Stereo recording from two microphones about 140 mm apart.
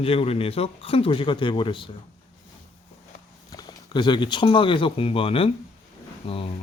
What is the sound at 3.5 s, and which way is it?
Speech, 30° left (ahead or behind).